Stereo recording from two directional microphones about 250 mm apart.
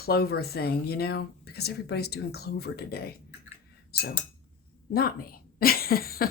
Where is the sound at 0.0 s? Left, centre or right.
Left.